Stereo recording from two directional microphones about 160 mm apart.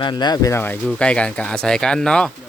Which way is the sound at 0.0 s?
25° left (ahead or behind).